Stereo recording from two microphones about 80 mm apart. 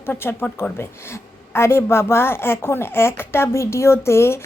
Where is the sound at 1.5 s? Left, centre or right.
Left.